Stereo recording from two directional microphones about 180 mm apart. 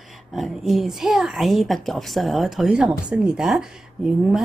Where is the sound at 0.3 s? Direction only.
Centre (ahead or behind).